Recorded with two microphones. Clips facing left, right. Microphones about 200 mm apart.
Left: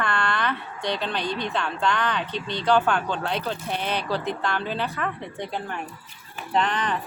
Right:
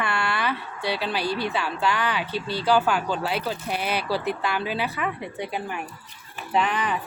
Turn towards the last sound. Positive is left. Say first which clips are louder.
# even
turn(degrees=-10)  # may be behind; listen again after turning